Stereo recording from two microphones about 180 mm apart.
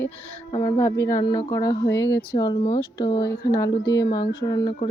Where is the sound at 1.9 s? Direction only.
80° left.